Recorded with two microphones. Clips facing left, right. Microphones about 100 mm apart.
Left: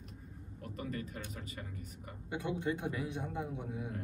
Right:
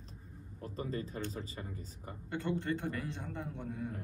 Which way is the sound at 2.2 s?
10° left (ahead or behind).